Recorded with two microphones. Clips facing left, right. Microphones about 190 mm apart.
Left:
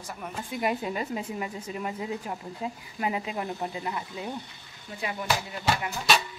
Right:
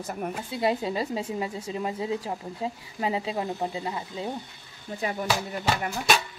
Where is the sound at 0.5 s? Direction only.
30° right (ahead or behind).